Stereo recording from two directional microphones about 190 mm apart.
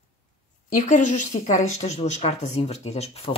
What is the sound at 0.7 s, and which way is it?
Speech, 40° left (ahead or behind).